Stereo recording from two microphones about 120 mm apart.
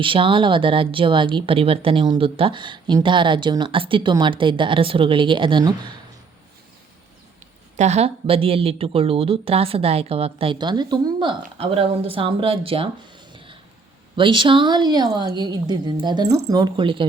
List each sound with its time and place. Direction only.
0.0 s speech: 45° right (ahead or behind)
7.8 s a woman's voice: 65° right (ahead or behind); by 17.1 s 45° right (ahead or behind)